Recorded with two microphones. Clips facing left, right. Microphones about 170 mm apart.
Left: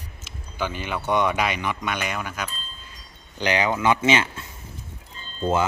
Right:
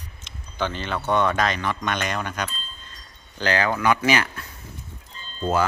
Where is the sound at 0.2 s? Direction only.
10° left (ahead or behind).